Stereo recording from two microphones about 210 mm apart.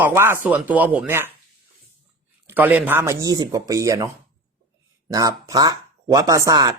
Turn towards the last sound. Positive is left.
turn(degrees=-20)  # may be behind; listen again after turning